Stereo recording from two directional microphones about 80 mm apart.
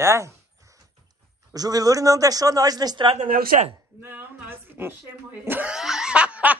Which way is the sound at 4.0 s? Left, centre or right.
Right.